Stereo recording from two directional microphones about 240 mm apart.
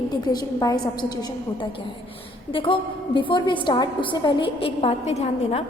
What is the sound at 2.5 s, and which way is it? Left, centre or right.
A woman's voice, left.